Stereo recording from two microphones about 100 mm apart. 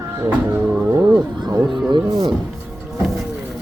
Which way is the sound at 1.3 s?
45° right (ahead or behind).